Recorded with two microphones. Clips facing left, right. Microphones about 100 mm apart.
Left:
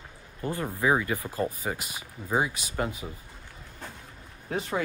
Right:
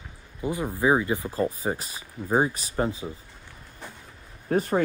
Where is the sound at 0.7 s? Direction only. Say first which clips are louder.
Right 3 dB; 25° right (ahead or behind).